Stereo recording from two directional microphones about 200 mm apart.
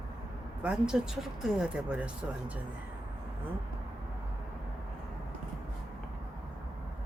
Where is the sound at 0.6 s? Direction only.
5° right (ahead or behind).